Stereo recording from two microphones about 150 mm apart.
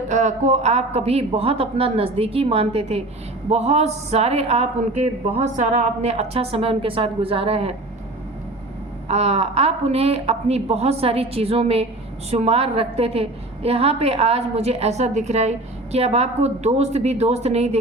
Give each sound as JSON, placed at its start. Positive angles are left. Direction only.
{"t": 0.1, "sound": "a woman's voice", "side_deg": -50}
{"t": 9.0, "sound": "a woman's voice", "side_deg": -45}